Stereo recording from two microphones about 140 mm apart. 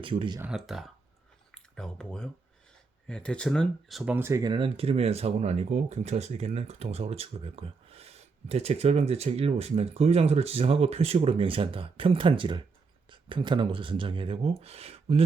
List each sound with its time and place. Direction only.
0.0 s speech: 40° right (ahead or behind)
0.5 s speech: centre (ahead or behind)
4.1 s speech: 20° right (ahead or behind)
4.4 s speech: 35° right (ahead or behind)